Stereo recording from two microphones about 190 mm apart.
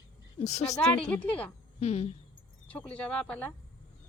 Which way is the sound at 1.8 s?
35° left (ahead or behind).